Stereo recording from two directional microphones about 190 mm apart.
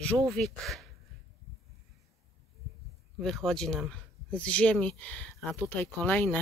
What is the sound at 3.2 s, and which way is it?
Speech, centre (ahead or behind).